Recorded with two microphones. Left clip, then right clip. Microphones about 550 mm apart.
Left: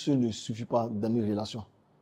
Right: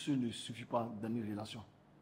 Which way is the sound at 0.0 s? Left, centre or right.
Left.